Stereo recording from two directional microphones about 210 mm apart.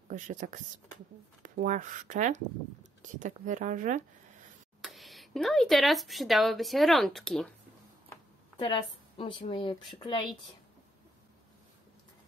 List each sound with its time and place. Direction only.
0.1 s speech: 35° right (ahead or behind)
4.8 s speech: centre (ahead or behind)
8.5 s speech: 25° left (ahead or behind)